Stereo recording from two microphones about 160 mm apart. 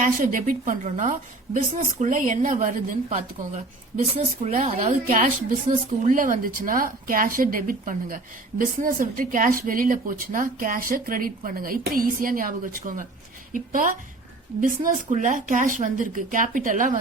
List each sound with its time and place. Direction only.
0.0 s a woman's voice: 55° right (ahead or behind)